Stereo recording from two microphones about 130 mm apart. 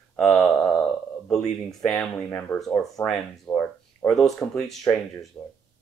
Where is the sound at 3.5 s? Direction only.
15° left (ahead or behind).